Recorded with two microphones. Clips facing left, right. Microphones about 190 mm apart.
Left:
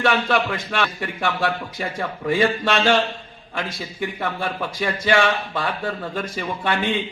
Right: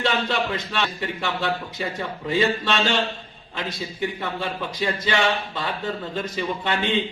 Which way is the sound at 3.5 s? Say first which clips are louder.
Left 2 dB; 20° right (ahead or behind).